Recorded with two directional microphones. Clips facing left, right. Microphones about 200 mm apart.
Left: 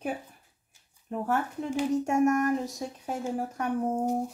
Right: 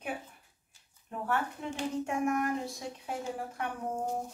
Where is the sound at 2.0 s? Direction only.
45° left (ahead or behind).